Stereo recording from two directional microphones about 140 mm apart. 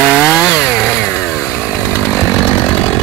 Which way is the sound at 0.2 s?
Centre (ahead or behind).